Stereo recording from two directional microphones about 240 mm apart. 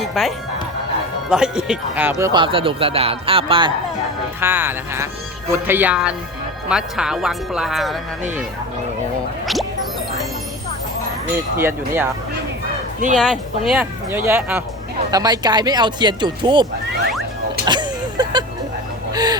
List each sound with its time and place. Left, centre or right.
0.0 s speech: centre; by 3.7 s right
4.4 s speech: centre
11.5 s speech: centre
13.1 s speech: centre
17.7 s a sound: centre
19.1 s gasp: centre